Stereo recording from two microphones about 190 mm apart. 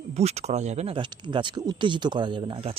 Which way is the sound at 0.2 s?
35° right (ahead or behind).